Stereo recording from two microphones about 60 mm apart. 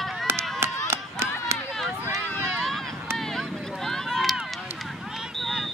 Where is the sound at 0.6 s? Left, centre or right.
Right.